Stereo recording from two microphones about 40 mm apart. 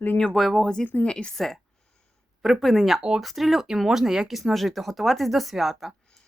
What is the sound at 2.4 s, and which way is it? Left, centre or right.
Speech, centre.